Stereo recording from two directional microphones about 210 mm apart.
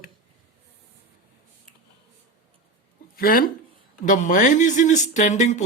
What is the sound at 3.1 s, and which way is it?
Speech, 45° left (ahead or behind).